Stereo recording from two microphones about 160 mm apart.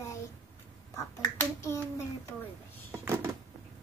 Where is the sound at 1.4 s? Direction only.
15° left (ahead or behind).